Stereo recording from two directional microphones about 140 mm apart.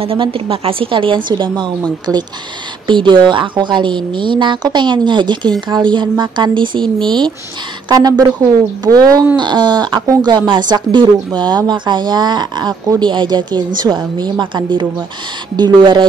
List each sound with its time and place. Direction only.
0.0 s speech: 40° right (ahead or behind)
2.9 s speech: 35° right (ahead or behind)